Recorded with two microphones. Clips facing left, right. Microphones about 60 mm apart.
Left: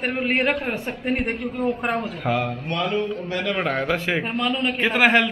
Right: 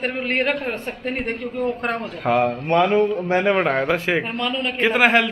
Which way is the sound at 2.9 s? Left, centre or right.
Right.